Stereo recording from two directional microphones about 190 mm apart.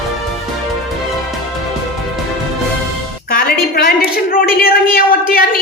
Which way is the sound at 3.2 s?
50° left (ahead or behind).